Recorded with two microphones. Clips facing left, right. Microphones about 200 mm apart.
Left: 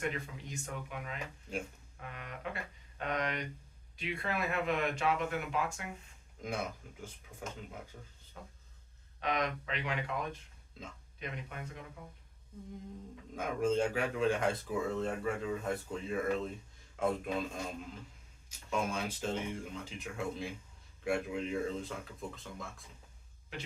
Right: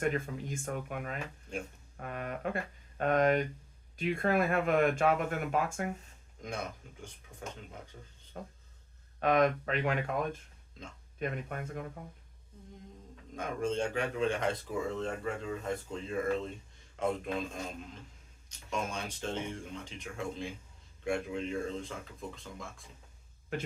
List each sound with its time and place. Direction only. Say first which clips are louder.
0.0 s speech: right 6 dB; 50° right (ahead or behind)
6.4 s speech: left 1 dB; 5° left (ahead or behind)
8.4 s speech: right 7 dB; 50° right (ahead or behind)
10.8 s speech: even; 5° left (ahead or behind)
11.2 s speech: right 7 dB; 50° right (ahead or behind)
13.3 s speech: left 2 dB; 5° left (ahead or behind)